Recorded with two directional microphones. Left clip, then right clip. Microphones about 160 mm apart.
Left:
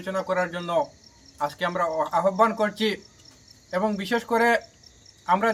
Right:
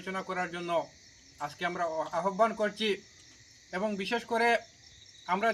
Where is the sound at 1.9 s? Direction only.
15° left (ahead or behind).